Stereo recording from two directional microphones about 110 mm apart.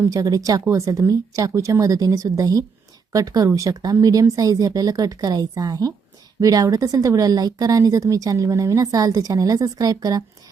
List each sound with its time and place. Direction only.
0.0 s speech: 30° right (ahead or behind)